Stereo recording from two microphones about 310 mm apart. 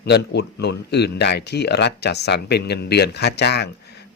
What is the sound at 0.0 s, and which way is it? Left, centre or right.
Speech, left.